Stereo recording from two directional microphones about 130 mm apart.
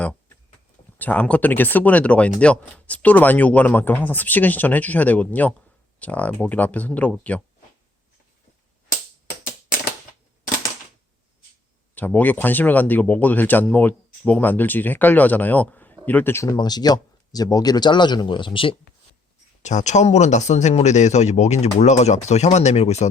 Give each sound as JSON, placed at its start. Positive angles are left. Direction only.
{"t": 0.0, "sound": "a sound", "side_deg": 10}
{"t": 0.9, "sound": "speech", "side_deg": 10}
{"t": 11.9, "sound": "speech", "side_deg": 15}
{"t": 16.6, "sound": "speech", "side_deg": 30}
{"t": 19.6, "sound": "speech", "side_deg": 65}